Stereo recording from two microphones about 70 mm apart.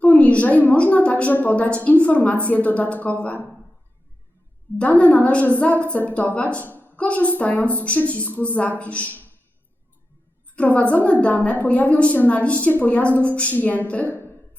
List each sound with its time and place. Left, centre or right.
0.0 s a sound: left
0.7 s a woman's voice: left
4.8 s a woman's voice: centre
10.5 s a woman's voice: centre